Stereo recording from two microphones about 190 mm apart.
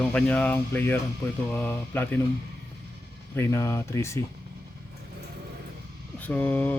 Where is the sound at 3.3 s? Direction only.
15° left (ahead or behind).